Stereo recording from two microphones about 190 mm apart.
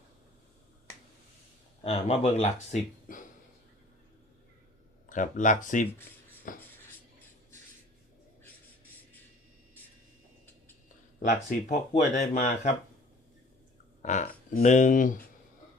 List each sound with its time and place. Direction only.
1.8 s speech: 30° left (ahead or behind)
5.0 s speech: 40° left (ahead or behind)
10.8 s speech: 40° left (ahead or behind)
14.0 s speech: 40° left (ahead or behind)